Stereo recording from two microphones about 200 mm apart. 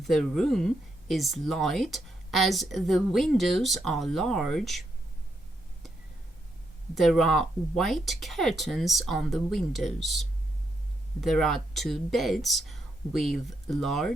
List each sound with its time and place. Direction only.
0.0 s speech: centre (ahead or behind)
6.9 s speech: centre (ahead or behind)